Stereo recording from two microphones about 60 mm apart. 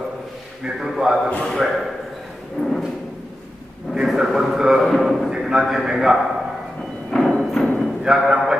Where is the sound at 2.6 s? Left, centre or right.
Centre.